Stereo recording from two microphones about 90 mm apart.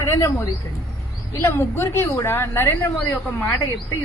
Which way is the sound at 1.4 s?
25° left (ahead or behind).